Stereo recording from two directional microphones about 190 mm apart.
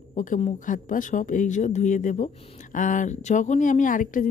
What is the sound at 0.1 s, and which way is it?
Speech, 40° left (ahead or behind).